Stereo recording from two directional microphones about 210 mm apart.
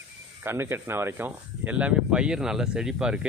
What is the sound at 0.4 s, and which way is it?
Speech, 10° right (ahead or behind).